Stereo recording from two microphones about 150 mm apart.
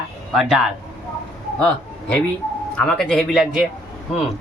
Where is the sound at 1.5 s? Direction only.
10° left (ahead or behind).